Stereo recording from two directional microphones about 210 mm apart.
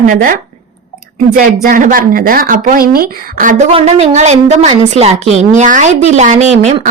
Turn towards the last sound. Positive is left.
turn(degrees=-30)  # may be behind; listen again after turning